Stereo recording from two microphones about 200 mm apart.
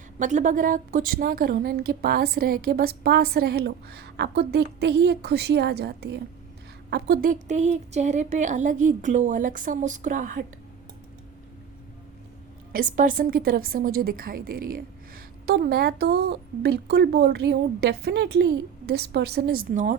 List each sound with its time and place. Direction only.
0.2 s a woman's voice: 40° right (ahead or behind)
12.7 s a woman's voice: 45° right (ahead or behind)